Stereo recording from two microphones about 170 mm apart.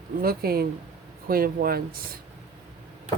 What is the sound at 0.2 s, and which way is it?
Speech, 65° right (ahead or behind).